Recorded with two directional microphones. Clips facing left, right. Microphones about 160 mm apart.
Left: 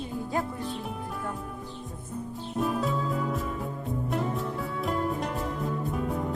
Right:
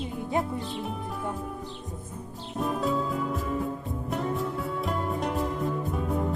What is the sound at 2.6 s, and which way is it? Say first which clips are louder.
Music: right 1 dB; centre (ahead or behind).